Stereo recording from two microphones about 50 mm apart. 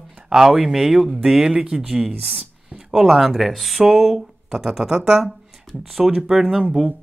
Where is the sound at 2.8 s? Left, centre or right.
Centre.